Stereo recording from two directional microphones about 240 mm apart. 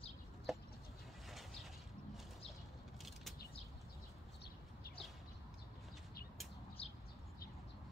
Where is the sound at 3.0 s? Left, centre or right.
Centre.